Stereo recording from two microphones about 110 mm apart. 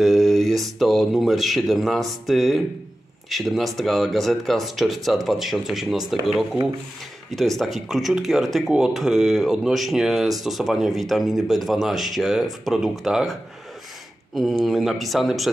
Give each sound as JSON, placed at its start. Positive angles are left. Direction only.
{"t": 0.0, "sound": "speech", "side_deg": 0}